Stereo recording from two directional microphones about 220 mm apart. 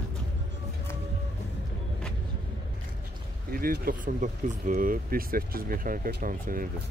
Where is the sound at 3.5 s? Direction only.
40° right (ahead or behind).